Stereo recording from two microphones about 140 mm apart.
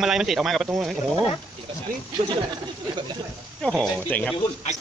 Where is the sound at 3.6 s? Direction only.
5° left (ahead or behind).